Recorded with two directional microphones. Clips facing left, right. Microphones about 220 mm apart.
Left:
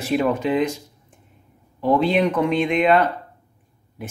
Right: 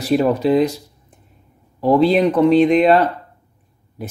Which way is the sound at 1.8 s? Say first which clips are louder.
Right 5 dB; 35° right (ahead or behind).